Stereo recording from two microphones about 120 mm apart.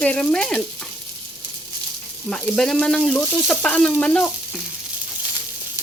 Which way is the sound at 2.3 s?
5° left (ahead or behind).